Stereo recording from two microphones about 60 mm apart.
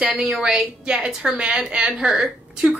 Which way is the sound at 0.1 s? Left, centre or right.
Centre.